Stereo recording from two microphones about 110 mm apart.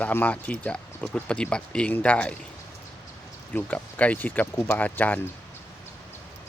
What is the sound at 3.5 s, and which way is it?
Speech, 10° left (ahead or behind).